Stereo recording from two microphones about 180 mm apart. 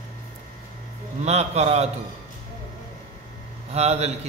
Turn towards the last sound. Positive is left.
turn(degrees=-35)  # may be behind; listen again after turning